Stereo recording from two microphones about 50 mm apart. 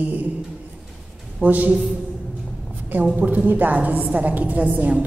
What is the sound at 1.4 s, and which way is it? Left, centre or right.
Mantra, right.